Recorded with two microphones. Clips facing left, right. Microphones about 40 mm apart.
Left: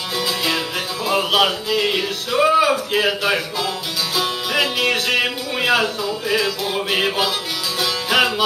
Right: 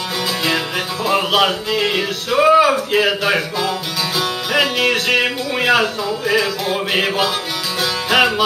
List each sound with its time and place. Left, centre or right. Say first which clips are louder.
1.3 s speech: right 1 dB; centre
7.8 s music: right 3 dB; centre